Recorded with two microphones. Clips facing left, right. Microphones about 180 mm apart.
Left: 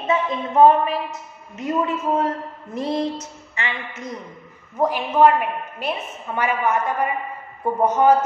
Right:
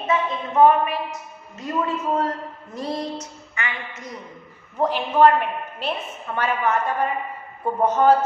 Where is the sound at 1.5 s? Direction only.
20° left (ahead or behind).